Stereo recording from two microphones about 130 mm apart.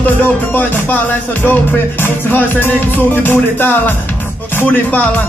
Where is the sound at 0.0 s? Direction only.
15° left (ahead or behind).